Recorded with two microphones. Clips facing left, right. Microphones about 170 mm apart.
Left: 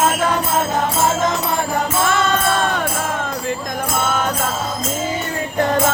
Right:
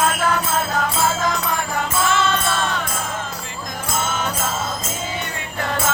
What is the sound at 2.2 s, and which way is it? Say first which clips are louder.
Music: left 3 dB; 45° left (ahead or behind).